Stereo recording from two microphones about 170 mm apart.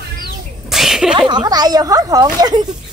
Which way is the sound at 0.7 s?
Centre (ahead or behind).